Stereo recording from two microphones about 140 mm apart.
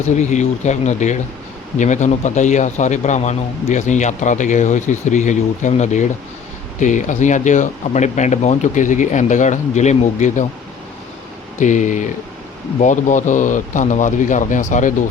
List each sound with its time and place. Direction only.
0.2 s speech: 55° left (ahead or behind)
11.6 s speech: 60° left (ahead or behind)